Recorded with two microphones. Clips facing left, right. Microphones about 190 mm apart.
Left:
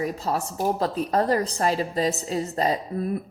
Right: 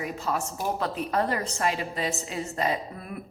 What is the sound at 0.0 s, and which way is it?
A woman's voice, 35° left (ahead or behind).